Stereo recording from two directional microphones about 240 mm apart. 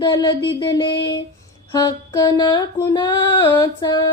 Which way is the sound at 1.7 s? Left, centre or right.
Centre.